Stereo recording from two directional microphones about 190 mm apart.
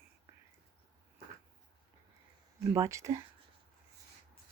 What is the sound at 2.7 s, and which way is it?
Speech, 15° right (ahead or behind).